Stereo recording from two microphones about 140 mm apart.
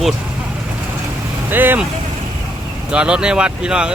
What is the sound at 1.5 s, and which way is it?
Speech, 15° right (ahead or behind).